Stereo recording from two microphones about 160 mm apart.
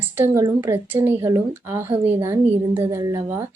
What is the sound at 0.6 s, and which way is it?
Speech, 15° right (ahead or behind).